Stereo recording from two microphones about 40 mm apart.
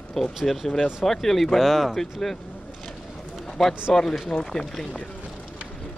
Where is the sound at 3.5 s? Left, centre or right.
Centre.